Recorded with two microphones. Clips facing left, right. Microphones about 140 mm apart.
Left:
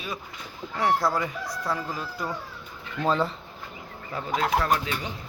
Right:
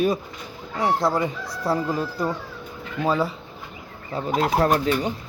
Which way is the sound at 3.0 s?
10° right (ahead or behind).